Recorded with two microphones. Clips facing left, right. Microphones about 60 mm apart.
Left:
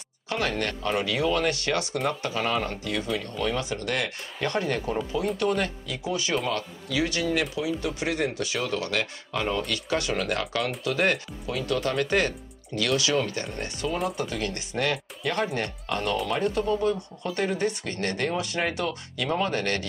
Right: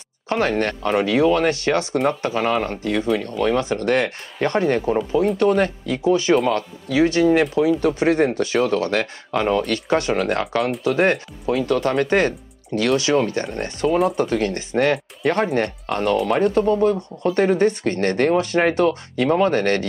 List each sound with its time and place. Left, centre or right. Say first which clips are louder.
0.3 s speech: right 8 dB; right